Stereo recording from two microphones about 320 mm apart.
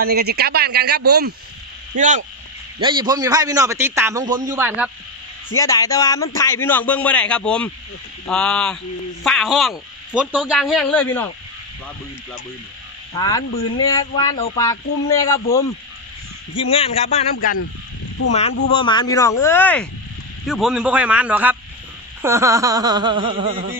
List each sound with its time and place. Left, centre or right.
0.0 s a man's voice: right; by 4.9 s centre
5.6 s a man's voice: centre
13.1 s a man's voice: centre
18.8 s a man's voice: centre